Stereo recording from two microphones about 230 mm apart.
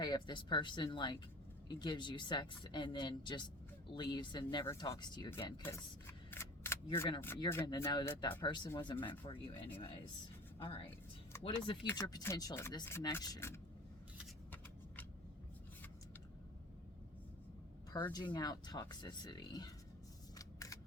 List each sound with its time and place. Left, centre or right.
0.0 s speech: centre
6.3 s a sound: centre
6.9 s speech: centre
11.4 s speech: left
18.0 s speech: centre